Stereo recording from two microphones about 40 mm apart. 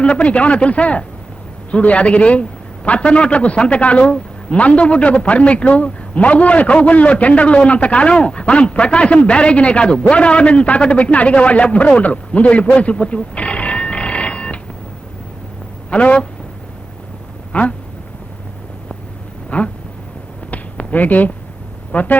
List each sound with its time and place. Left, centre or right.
0.0 s a man's voice: left
15.9 s a man's voice: left
17.5 s speech: left
19.5 s a sound: left
21.9 s speech: left